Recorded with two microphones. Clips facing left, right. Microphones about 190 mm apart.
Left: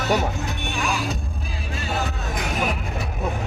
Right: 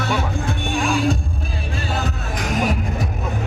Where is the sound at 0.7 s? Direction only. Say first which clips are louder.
Right 6 dB; 30° right (ahead or behind).